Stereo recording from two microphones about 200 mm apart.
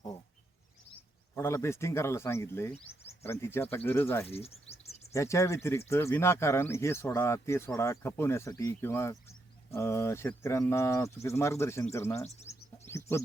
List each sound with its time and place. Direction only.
1.4 s speech: 15° left (ahead or behind)
4.3 s speech: 30° left (ahead or behind)
5.1 s speech: 15° left (ahead or behind)
12.9 s chicken: 15° left (ahead or behind)